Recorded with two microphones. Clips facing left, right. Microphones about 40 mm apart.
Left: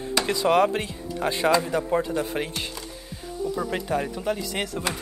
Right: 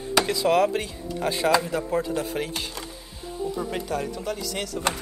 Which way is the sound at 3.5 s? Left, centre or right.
Centre.